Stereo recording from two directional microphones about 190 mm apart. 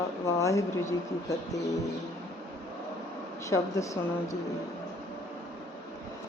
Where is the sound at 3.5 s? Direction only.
15° left (ahead or behind).